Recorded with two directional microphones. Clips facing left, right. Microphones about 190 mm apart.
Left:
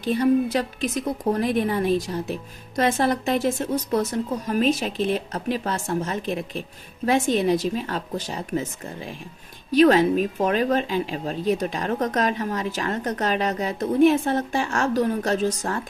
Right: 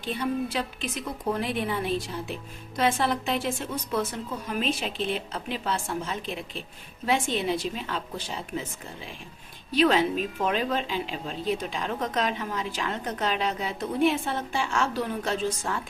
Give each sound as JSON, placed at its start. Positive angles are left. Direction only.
{"t": 0.0, "sound": "a woman's voice", "side_deg": 45}
{"t": 9.7, "sound": "a woman's voice", "side_deg": 45}